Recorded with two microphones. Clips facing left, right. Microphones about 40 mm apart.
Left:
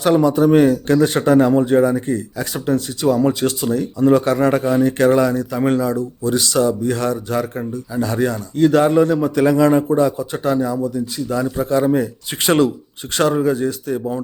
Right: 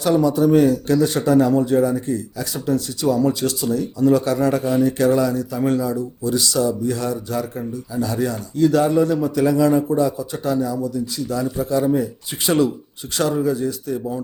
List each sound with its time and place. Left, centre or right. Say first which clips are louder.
0.0 s speech: left 3 dB; left